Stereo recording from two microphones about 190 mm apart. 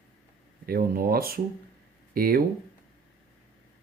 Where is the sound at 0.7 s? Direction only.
50° right (ahead or behind).